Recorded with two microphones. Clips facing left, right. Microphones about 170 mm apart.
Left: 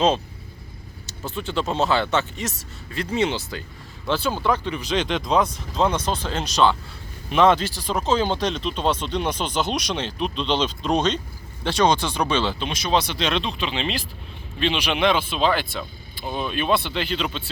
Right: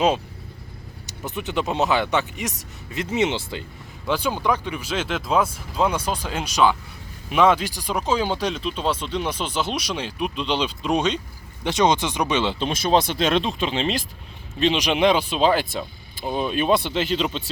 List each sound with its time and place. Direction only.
1.0 s speech: 15° right (ahead or behind)
12.5 s speech: 45° right (ahead or behind)
16.2 s speech: 5° right (ahead or behind)
16.5 s speech: 40° right (ahead or behind)